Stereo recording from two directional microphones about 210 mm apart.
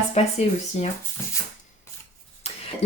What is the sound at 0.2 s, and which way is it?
Speech, 30° left (ahead or behind).